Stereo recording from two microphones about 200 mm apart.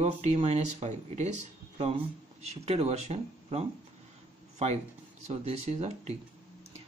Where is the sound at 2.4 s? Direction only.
30° right (ahead or behind).